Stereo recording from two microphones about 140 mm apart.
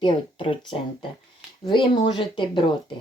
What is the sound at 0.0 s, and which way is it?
Speech, 35° left (ahead or behind).